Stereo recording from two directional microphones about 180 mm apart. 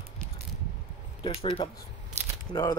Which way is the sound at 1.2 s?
30° left (ahead or behind).